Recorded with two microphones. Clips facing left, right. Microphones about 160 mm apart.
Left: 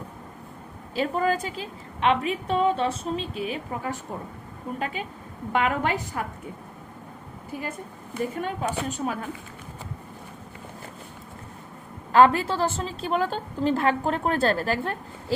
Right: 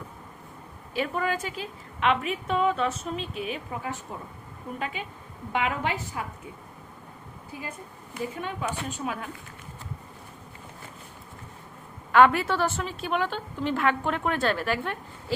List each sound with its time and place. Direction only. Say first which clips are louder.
0.9 s a woman's voice: left 4 dB; 35° left (ahead or behind)
8.4 s a woman's voice: left 4 dB; 45° left (ahead or behind)
12.1 s a woman's voice: left 1 dB; 35° left (ahead or behind)